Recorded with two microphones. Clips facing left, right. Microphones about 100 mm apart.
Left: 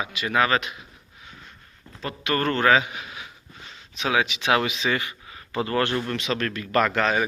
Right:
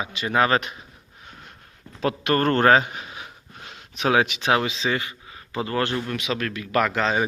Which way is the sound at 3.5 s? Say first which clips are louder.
Right 2 dB; 60° right (ahead or behind).